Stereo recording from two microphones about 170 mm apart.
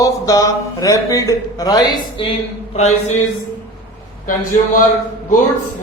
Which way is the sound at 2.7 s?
40° left (ahead or behind).